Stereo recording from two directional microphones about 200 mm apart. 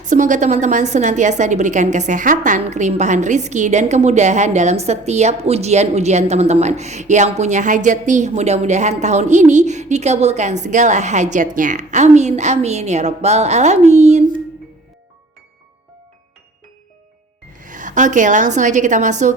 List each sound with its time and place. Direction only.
0.0 s a woman's voice: 40° right (ahead or behind)
17.6 s a woman's voice: 40° right (ahead or behind)